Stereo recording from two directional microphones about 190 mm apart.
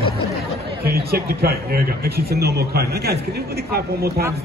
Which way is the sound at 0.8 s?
55° right (ahead or behind).